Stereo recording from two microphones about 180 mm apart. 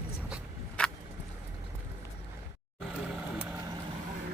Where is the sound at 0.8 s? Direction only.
5° left (ahead or behind).